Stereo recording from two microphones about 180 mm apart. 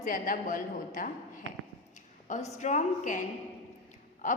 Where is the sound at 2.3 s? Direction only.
40° left (ahead or behind).